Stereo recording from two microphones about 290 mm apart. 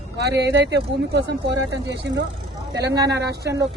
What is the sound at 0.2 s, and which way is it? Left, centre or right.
Speech, right.